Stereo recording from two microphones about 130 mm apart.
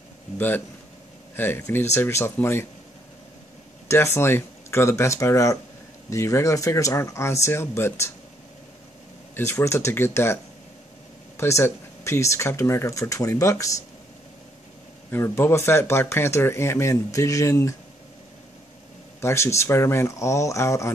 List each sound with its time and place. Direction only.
1.3 s speech: 15° left (ahead or behind)
3.9 s speech: 20° left (ahead or behind)
9.3 s speech: 20° left (ahead or behind)
15.0 s speech: 15° left (ahead or behind)
19.2 s speech: 20° left (ahead or behind)